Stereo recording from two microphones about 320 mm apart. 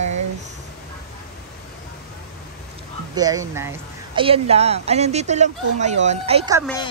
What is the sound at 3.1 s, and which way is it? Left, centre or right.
Speech, centre.